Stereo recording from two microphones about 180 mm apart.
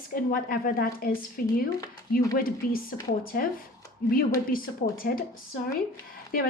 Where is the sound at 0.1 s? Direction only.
55° left (ahead or behind).